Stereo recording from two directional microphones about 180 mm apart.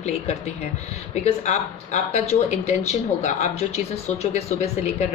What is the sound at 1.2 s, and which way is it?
Speech, 40° left (ahead or behind).